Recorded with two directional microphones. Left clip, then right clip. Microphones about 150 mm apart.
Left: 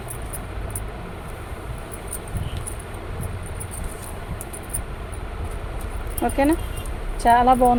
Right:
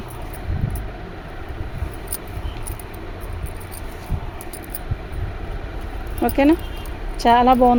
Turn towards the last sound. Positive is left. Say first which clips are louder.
# right 2 dB
turn(degrees=-70)  # may be behind; listen again after turning